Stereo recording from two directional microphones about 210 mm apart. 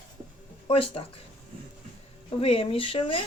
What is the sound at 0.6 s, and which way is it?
Speech, 25° left (ahead or behind).